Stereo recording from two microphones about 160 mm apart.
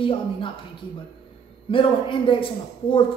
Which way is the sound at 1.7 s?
30° left (ahead or behind).